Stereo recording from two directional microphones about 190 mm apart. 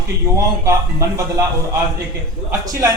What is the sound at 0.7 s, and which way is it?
A man's voice, 15° right (ahead or behind).